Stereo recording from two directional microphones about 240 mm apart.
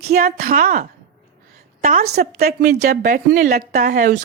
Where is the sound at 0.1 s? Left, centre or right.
Right.